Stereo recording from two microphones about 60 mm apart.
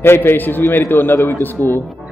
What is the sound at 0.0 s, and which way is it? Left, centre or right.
Speech, left.